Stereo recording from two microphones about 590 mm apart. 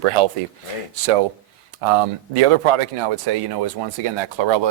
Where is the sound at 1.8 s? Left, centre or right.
Right.